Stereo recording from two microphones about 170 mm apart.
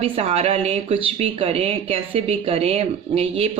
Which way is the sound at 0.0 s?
35° right (ahead or behind).